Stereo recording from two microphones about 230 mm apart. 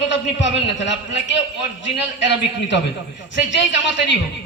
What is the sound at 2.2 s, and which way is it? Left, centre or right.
A man's voice, left.